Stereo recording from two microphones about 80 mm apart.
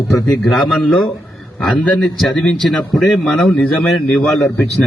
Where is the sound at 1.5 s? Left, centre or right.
Centre.